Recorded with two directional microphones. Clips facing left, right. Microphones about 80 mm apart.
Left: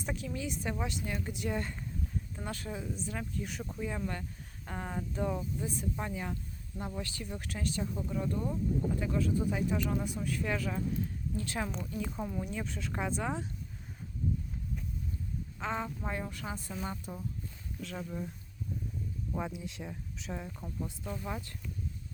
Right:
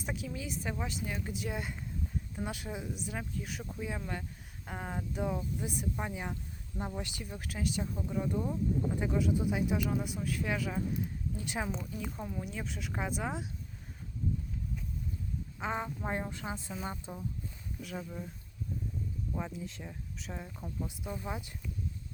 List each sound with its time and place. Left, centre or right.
0.0 s speech: centre
7.3 s speech: centre
11.7 s speech: centre
15.6 s speech: centre
16.0 s a woman's voice: right
16.9 s speech: centre
19.3 s speech: centre
20.8 s speech: centre